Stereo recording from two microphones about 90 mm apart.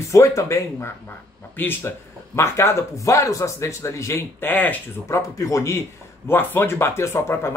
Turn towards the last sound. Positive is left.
turn(degrees=30)  # may be behind; listen again after turning